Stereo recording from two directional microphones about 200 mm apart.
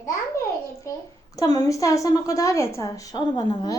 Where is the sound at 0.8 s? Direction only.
15° left (ahead or behind).